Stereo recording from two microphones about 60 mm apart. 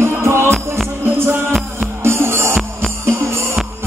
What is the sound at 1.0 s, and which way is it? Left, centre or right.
Music, right.